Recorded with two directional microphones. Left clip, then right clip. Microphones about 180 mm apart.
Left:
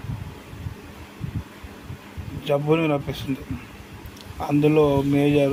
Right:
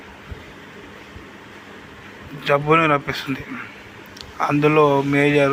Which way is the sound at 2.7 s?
15° left (ahead or behind).